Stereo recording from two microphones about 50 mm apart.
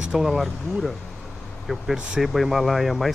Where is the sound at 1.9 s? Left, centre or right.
Centre.